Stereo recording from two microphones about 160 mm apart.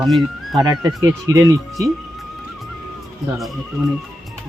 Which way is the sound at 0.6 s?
25° right (ahead or behind).